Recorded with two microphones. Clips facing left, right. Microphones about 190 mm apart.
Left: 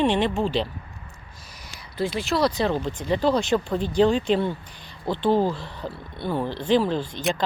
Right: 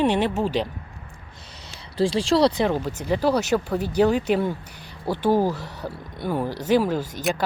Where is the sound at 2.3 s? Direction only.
30° right (ahead or behind).